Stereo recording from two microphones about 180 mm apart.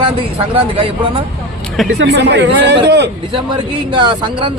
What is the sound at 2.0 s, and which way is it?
Speech, 75° right (ahead or behind).